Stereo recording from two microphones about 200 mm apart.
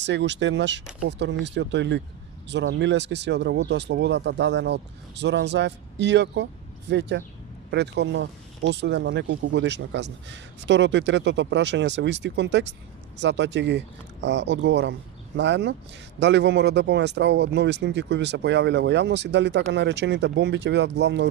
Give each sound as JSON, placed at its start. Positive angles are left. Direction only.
{"t": 0.0, "sound": "speech", "side_deg": -60}